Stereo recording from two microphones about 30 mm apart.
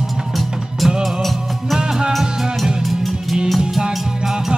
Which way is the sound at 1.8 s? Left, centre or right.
Right.